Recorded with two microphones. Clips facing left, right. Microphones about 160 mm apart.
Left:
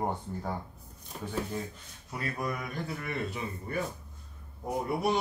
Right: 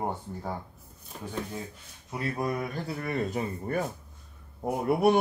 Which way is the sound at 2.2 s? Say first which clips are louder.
Right 4 dB; 30° right (ahead or behind).